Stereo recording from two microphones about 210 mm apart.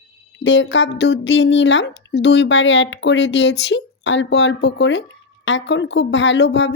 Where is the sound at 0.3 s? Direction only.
60° left (ahead or behind).